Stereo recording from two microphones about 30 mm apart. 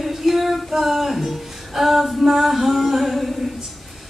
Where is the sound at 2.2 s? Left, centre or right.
Centre.